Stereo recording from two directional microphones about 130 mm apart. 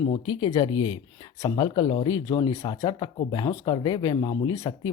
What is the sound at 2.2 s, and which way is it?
Speech, 30° left (ahead or behind).